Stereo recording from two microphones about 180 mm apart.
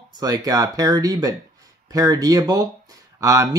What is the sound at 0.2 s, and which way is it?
Speech, 20° right (ahead or behind).